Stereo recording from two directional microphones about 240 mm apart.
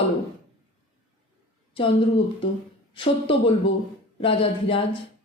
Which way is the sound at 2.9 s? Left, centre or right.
Left.